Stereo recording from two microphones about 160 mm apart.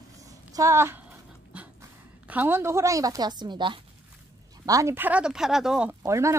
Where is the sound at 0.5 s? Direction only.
20° right (ahead or behind).